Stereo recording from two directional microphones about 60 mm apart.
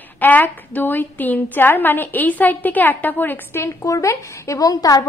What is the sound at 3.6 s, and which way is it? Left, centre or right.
A woman's voice, left.